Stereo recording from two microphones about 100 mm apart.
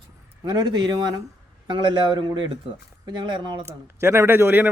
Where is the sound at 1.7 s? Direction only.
50° right (ahead or behind).